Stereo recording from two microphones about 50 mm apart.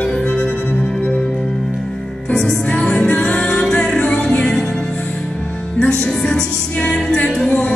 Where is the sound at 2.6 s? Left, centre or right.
Left.